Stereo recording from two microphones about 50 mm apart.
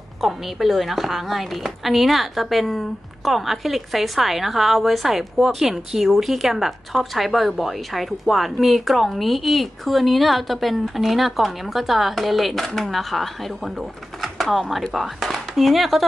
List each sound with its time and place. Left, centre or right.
0.2 s a woman's voice: centre